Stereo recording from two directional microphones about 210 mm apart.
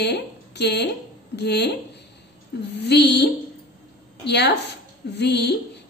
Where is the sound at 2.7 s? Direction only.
50° left (ahead or behind).